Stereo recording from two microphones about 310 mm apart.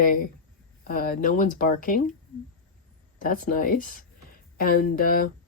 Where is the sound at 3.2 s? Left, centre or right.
Left.